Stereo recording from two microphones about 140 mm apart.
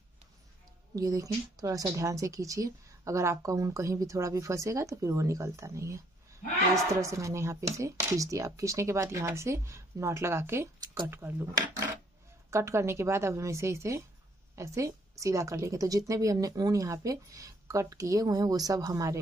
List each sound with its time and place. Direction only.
0.9 s speech: 25° right (ahead or behind)
12.4 s speech: 20° right (ahead or behind)